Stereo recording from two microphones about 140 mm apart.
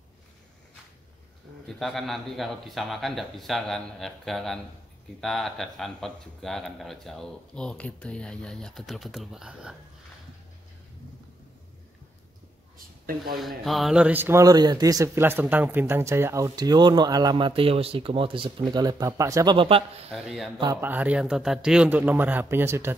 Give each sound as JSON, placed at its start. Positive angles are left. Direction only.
{"t": 1.7, "sound": "speech", "side_deg": 0}
{"t": 13.4, "sound": "a man's voice", "side_deg": 0}
{"t": 19.5, "sound": "a man's voice", "side_deg": -40}
{"t": 20.1, "sound": "speech", "side_deg": 0}
{"t": 20.8, "sound": "a man's voice", "side_deg": -10}